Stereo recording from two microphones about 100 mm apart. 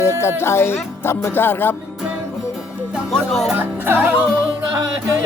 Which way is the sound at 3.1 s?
5° left (ahead or behind).